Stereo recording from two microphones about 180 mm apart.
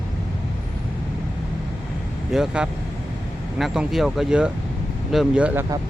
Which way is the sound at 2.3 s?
5° right (ahead or behind).